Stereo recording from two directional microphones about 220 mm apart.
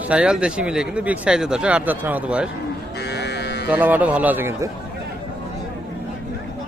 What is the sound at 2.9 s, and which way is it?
Sheep, 50° left (ahead or behind).